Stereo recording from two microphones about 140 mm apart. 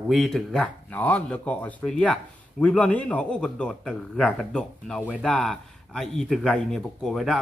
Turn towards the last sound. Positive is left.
turn(degrees=5)  # may be behind; listen again after turning